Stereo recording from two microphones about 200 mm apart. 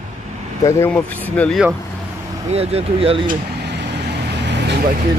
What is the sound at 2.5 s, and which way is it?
Speech, 30° right (ahead or behind).